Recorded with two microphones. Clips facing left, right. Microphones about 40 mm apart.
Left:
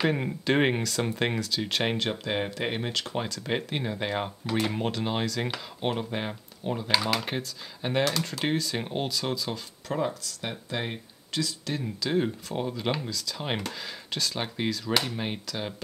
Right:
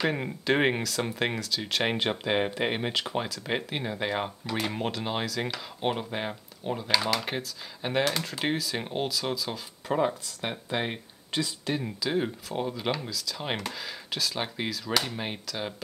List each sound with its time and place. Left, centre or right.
0.0 s speech: centre
2.0 s speech: centre
3.2 s speech: centre
9.8 s speech: centre
12.1 s speech: centre